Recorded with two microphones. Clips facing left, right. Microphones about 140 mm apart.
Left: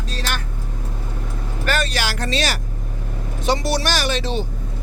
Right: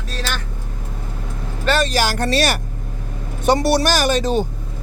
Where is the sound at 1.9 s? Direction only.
45° right (ahead or behind).